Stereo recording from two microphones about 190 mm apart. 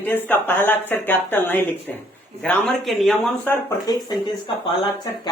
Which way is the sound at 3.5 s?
20° left (ahead or behind).